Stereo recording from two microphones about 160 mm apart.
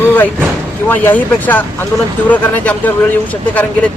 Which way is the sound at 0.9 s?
10° left (ahead or behind).